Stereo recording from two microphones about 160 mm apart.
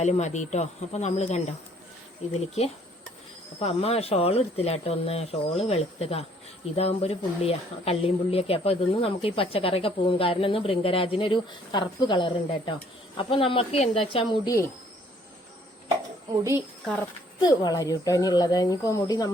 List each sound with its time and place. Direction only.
0.0 s speech: 45° left (ahead or behind)
3.6 s speech: 40° left (ahead or behind); by 14.7 s 20° left (ahead or behind)
16.3 s a woman's voice: 20° right (ahead or behind)
17.4 s speech: 25° left (ahead or behind)